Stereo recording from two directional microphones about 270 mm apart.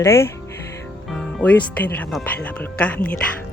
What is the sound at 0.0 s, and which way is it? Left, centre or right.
A woman's voice, centre.